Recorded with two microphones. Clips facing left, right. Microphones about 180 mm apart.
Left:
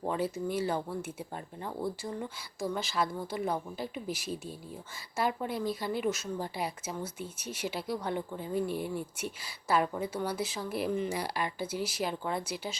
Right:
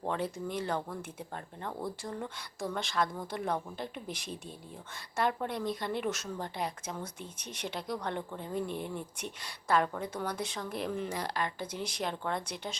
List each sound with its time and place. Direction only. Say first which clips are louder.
0.0 s a woman's voice: left 2 dB; 5° left (ahead or behind)